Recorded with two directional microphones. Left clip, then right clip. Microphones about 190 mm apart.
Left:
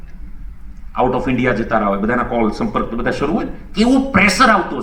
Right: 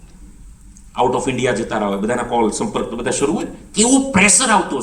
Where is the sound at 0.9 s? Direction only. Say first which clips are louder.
Even; 85° right.